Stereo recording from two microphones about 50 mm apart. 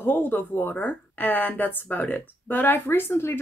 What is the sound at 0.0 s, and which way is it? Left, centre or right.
Speech, left.